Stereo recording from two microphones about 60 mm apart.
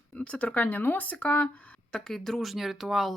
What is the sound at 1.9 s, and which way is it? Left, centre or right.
Speech, centre.